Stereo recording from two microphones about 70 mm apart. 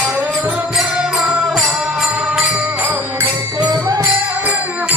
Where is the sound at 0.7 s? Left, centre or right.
Centre.